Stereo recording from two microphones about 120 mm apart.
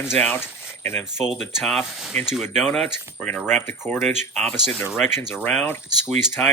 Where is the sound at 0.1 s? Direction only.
20° left (ahead or behind).